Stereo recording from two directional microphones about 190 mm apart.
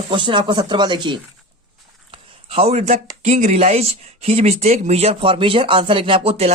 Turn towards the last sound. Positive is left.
turn(degrees=-30)  # may be behind; listen again after turning